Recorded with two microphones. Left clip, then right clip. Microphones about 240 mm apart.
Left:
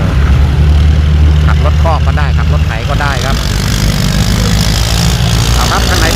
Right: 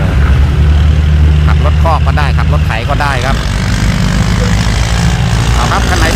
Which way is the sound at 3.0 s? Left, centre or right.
Centre.